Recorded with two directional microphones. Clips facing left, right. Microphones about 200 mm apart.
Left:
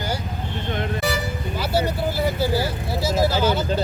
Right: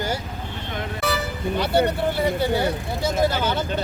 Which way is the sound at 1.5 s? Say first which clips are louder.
Right 3 dB; 5° left (ahead or behind).